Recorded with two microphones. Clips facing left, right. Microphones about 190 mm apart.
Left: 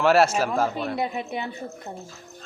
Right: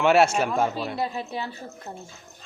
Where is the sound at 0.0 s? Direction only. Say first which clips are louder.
Even; centre (ahead or behind).